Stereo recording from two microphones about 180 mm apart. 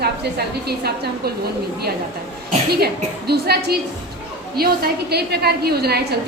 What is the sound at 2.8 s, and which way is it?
A woman's voice, 60° right (ahead or behind).